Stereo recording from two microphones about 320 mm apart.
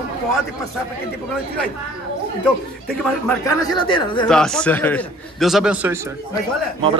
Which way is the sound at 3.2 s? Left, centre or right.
Centre.